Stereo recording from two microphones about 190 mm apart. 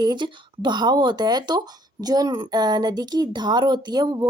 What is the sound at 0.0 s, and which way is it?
Speech, 25° right (ahead or behind).